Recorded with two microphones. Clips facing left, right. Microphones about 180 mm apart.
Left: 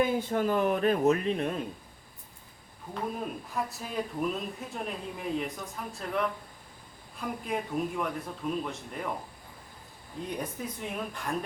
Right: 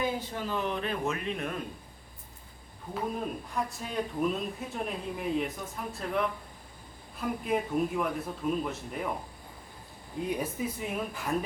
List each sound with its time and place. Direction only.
0.2 s speech: 50° left (ahead or behind); by 1.5 s 35° left (ahead or behind)
2.9 s speech: centre (ahead or behind)
10.2 s speech: 5° right (ahead or behind)